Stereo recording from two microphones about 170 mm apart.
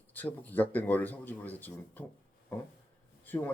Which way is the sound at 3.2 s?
10° left (ahead or behind).